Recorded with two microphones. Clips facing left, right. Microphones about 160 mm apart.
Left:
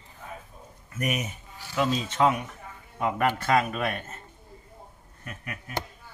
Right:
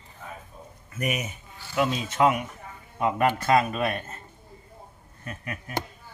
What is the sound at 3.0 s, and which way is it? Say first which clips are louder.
Speech: right 2 dB; 20° right (ahead or behind).